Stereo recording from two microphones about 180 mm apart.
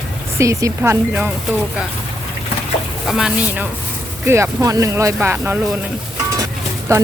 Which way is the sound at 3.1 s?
5° right (ahead or behind).